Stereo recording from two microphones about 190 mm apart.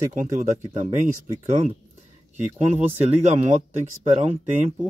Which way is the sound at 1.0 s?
35° right (ahead or behind).